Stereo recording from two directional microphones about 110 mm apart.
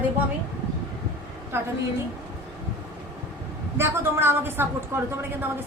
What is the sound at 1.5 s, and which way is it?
Speech, 20° right (ahead or behind).